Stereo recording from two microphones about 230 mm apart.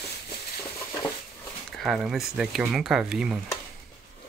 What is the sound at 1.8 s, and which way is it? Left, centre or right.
Speech, centre.